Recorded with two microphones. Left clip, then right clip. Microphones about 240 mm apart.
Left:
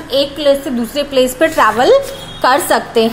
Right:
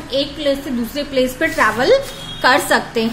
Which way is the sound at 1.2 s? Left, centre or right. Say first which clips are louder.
Left 4 dB; centre.